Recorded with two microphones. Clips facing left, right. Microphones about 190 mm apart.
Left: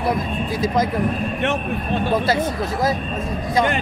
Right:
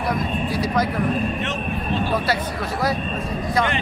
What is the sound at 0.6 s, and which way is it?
Speech, 20° left (ahead or behind).